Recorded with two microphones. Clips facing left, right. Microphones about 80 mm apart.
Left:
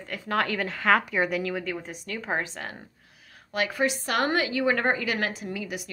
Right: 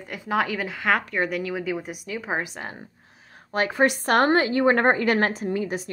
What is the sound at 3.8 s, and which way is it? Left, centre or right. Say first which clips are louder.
A woman's voice: right 7 dB; right.